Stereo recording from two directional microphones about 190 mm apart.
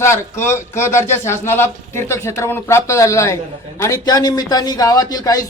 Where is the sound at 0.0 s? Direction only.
15° left (ahead or behind).